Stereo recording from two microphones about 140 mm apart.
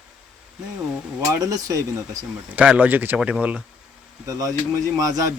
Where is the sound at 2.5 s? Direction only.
10° right (ahead or behind).